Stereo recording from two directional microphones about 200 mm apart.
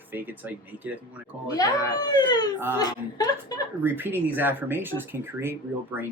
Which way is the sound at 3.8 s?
10° right (ahead or behind).